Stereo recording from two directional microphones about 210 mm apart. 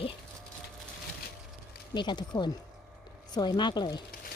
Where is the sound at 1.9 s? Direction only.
20° left (ahead or behind).